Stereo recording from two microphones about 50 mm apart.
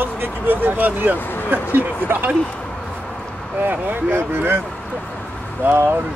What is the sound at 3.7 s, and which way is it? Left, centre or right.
Speech, right.